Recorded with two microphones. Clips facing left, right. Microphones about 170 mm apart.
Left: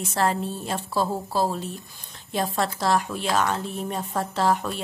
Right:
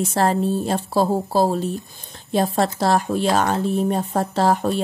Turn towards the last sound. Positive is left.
turn(degrees=-35)  # may be behind; listen again after turning